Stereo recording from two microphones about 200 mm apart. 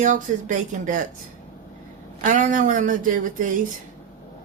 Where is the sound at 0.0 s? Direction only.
40° right (ahead or behind).